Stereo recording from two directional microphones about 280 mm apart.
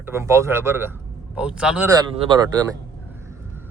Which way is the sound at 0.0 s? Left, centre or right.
Centre.